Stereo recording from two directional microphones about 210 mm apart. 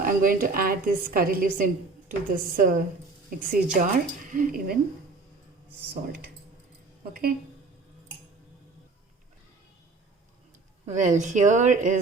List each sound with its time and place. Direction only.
0.0 s a woman's voice: 40° right (ahead or behind)
7.1 s a woman's voice: 45° right (ahead or behind)
10.8 s a woman's voice: 35° right (ahead or behind)